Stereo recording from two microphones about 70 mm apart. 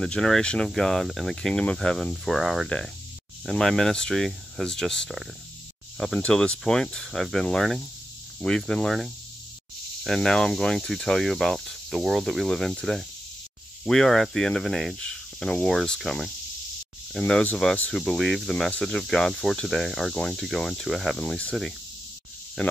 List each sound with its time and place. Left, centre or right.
0.0 s cricket: centre
6.1 s cricket: centre
10.0 s speech: centre
15.0 s cricket: centre
17.3 s speech: centre
17.9 s speech: centre
18.7 s cricket: centre
20.4 s speech: centre
22.6 s speech: centre